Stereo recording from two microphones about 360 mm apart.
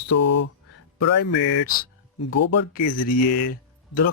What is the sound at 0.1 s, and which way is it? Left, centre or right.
Speech, left.